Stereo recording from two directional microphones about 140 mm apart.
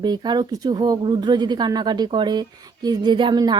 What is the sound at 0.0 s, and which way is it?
Speech, 30° right (ahead or behind).